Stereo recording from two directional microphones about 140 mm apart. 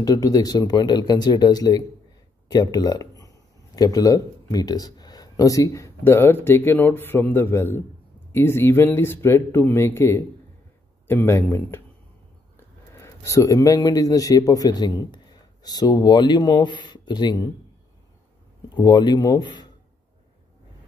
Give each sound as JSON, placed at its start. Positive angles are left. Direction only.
{"t": 0.0, "sound": "speech", "side_deg": 25}
{"t": 18.8, "sound": "speech", "side_deg": 30}